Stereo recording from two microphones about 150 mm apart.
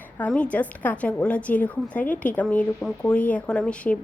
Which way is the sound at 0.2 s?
10° left (ahead or behind).